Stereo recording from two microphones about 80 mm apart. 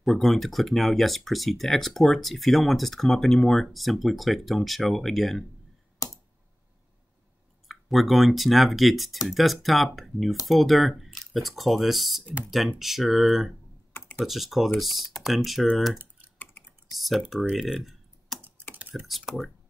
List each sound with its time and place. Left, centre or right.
0.0 s speech: centre
7.6 s speech: centre
15.6 s speech: centre
16.6 s computer keyboard: left
16.9 s speech: centre